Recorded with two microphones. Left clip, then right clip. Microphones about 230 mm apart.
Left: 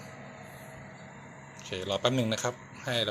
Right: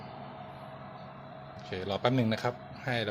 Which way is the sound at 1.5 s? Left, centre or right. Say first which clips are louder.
Left 2 dB; centre.